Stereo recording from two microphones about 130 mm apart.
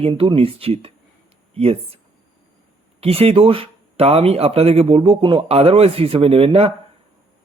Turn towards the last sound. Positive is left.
turn(degrees=-45)  # may be behind; listen again after turning